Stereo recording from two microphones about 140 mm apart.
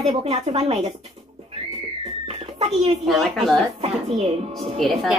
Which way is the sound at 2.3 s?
45° right (ahead or behind).